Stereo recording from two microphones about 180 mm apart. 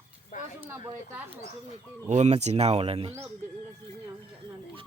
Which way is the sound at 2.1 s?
40° right (ahead or behind).